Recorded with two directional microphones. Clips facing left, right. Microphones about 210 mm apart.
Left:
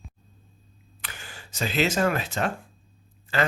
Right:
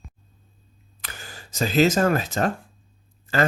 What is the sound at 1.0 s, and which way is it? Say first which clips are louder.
Speech: right 2 dB; 40° right (ahead or behind).